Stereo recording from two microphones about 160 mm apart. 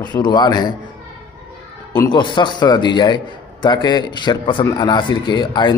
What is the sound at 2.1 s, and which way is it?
A man's voice, 30° left (ahead or behind).